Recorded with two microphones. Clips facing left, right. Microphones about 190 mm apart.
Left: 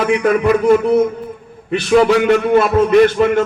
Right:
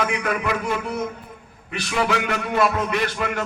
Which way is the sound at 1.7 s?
30° left (ahead or behind).